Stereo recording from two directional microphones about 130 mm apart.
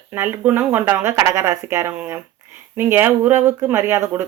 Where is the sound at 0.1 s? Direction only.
15° right (ahead or behind).